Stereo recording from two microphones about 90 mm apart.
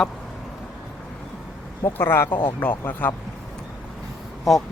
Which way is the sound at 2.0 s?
25° left (ahead or behind).